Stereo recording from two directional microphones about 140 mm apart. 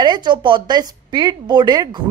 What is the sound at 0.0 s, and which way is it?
Speech, 30° right (ahead or behind).